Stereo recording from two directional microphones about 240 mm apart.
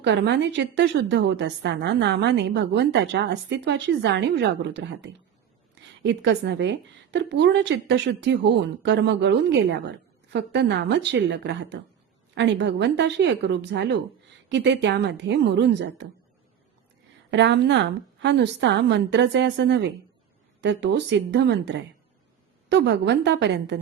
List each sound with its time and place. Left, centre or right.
0.0 s a woman's voice: right
17.3 s a woman's voice: right